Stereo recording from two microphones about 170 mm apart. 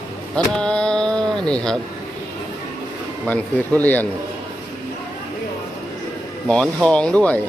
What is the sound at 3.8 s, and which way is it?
Speech, 10° left (ahead or behind).